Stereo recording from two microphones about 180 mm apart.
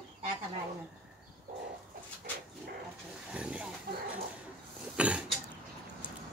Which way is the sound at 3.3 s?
5° right (ahead or behind).